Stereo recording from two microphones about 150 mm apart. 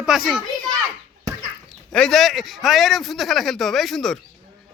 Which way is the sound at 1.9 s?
5° left (ahead or behind).